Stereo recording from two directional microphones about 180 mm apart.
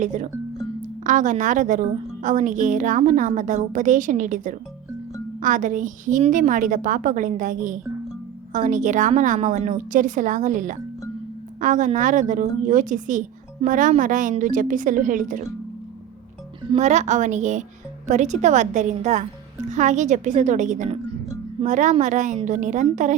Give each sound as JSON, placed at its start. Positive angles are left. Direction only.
{"t": 0.0, "sound": "a woman's voice", "side_deg": -45}
{"t": 16.7, "sound": "a woman's voice", "side_deg": -40}